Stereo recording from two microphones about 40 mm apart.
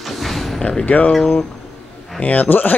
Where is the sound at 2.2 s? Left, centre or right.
Left.